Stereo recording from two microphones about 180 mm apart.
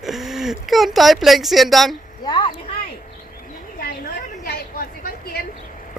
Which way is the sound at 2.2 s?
25° left (ahead or behind).